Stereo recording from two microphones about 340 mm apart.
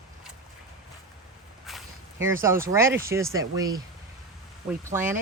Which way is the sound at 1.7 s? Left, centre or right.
Centre.